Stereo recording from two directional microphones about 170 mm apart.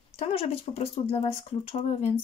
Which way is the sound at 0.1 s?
35° left (ahead or behind).